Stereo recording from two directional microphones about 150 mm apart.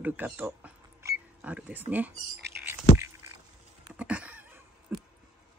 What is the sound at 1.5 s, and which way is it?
Speech, 10° right (ahead or behind).